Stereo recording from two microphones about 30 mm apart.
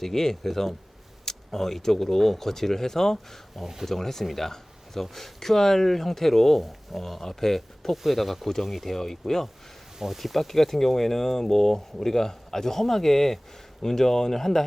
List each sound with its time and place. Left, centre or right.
0.0 s speech: centre
8.9 s speech: centre
10.2 s speech: centre